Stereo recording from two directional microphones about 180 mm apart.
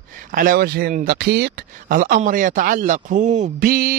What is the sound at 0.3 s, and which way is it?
Mantra, 50° right (ahead or behind).